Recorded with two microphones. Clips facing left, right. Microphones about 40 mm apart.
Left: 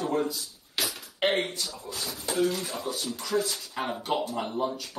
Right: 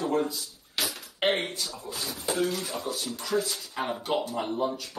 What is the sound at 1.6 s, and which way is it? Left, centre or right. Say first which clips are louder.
Speech: even; right.